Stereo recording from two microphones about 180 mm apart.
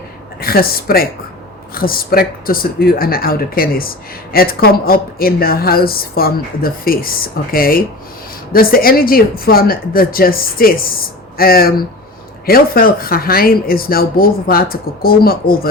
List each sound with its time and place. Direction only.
0.3 s a woman's voice: 55° left (ahead or behind)